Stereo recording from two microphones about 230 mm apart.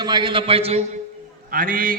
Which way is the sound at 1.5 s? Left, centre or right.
Right.